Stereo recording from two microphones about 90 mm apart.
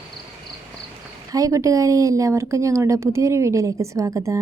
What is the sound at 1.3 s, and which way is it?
A woman's voice, 40° right (ahead or behind).